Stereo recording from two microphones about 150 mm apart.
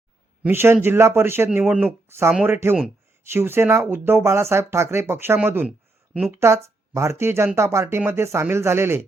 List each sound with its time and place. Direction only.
0.4 s speech: 15° right (ahead or behind)